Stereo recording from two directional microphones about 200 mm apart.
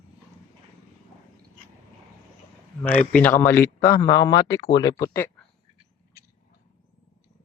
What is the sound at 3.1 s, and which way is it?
Speech, 10° left (ahead or behind).